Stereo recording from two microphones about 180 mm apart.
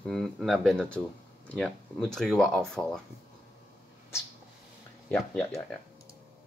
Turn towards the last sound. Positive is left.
turn(degrees=10)  # may be behind; listen again after turning